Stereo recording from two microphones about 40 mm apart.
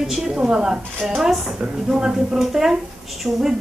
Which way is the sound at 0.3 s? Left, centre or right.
Centre.